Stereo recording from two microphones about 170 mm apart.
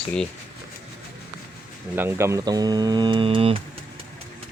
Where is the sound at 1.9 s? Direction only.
15° right (ahead or behind); by 3.6 s 30° right (ahead or behind).